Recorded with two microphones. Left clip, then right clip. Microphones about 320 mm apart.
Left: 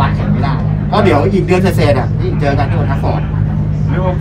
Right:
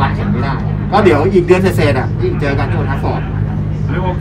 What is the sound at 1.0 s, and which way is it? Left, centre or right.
Speech, centre.